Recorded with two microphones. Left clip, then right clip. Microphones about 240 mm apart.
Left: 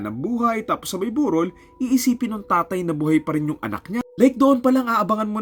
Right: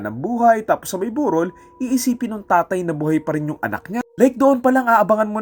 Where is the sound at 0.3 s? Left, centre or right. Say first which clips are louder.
Right 8 dB; centre.